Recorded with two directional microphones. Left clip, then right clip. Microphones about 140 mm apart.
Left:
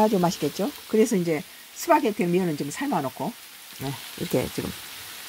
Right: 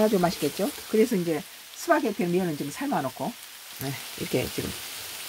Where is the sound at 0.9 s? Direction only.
20° left (ahead or behind).